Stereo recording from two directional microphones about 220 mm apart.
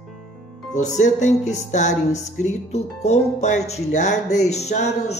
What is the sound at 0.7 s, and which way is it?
Music, 35° left (ahead or behind).